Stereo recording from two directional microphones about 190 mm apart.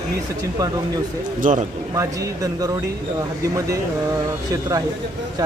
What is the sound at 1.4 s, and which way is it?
Speech, 45° right (ahead or behind).